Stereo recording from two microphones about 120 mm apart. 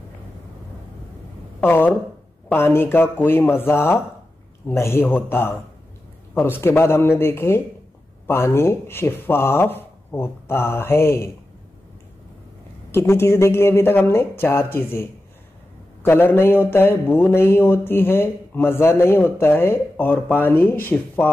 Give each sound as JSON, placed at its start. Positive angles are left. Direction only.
{"t": 1.6, "sound": "speech", "side_deg": 15}
{"t": 12.9, "sound": "speech", "side_deg": 20}